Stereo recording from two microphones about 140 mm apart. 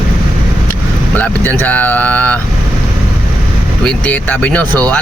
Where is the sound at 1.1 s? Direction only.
10° left (ahead or behind).